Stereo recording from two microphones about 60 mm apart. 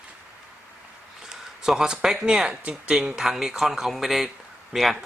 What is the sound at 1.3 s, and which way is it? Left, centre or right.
Speech, centre.